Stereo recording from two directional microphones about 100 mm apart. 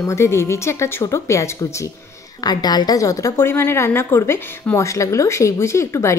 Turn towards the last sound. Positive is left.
turn(degrees=30)  # may be behind; listen again after turning